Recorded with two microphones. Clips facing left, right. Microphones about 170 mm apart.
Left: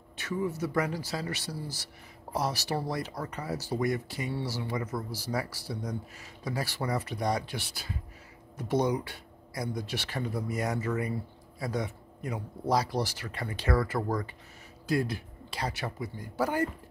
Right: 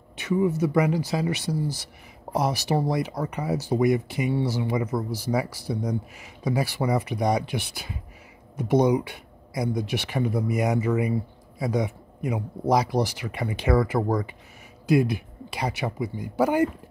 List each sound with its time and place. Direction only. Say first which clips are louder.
0.5 s speech: right 8 dB; 15° right (ahead or behind)